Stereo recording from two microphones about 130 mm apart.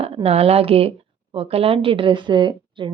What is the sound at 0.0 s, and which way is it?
Speech, 50° right (ahead or behind).